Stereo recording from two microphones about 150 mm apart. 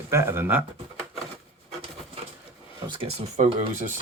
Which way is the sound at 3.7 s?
55° right (ahead or behind).